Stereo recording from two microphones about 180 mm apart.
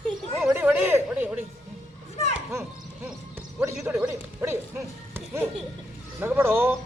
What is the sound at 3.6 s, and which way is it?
Speech, 10° right (ahead or behind).